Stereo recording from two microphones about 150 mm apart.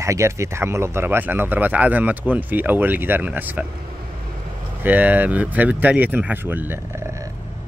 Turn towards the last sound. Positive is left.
turn(degrees=-20)  # may be behind; listen again after turning